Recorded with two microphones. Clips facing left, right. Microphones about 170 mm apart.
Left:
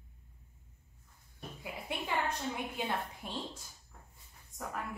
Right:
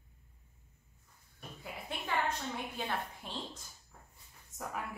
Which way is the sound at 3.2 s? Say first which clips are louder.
Left 2 dB; 15° left (ahead or behind).